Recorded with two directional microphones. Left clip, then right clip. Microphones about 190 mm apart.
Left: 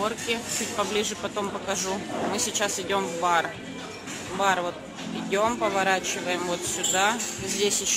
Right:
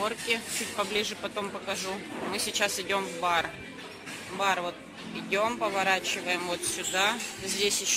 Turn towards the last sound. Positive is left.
turn(degrees=0)  # may be behind; listen again after turning